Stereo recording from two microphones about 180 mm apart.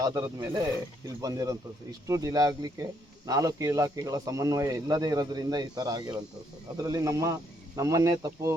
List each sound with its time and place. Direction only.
0.0 s speech: 20° right (ahead or behind)